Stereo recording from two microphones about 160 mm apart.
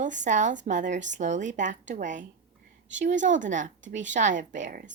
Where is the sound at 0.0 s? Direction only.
50° right (ahead or behind).